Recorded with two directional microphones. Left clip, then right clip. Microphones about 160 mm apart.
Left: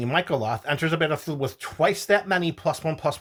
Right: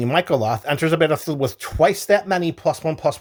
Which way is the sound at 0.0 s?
45° right (ahead or behind).